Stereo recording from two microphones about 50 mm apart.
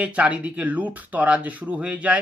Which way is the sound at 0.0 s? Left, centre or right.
Right.